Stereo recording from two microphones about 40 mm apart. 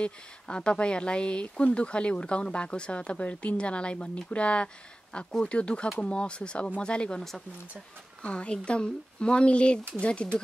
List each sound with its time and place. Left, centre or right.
0.0 s speech: left